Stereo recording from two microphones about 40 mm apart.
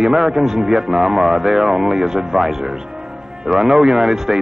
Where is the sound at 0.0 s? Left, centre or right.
Centre.